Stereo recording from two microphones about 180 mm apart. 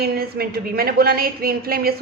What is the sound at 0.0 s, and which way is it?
Speech, 60° right (ahead or behind).